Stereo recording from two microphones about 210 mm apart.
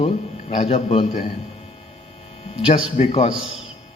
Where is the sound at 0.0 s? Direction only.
30° left (ahead or behind).